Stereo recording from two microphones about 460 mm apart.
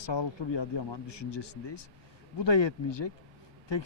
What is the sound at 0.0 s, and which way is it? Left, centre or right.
Speech, left.